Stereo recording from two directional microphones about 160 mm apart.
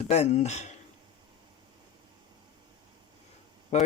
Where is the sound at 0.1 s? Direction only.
45° left (ahead or behind).